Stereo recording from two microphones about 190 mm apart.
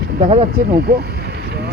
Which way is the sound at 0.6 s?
55° right (ahead or behind).